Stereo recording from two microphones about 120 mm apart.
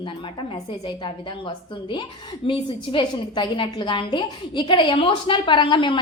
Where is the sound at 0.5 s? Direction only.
45° left (ahead or behind).